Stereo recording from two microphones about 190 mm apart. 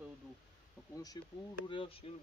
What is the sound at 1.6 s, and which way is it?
Speech, 25° left (ahead or behind).